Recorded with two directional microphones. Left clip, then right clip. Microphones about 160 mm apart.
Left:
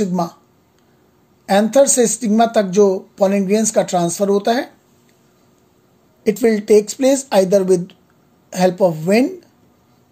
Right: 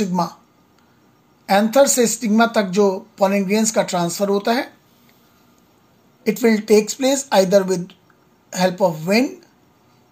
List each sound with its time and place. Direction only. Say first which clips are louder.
0.0 s speech: left 1 dB; 40° left (ahead or behind)
1.4 s speech: left 2 dB; 40° left (ahead or behind)
6.2 s speech: left 2 dB; 45° left (ahead or behind)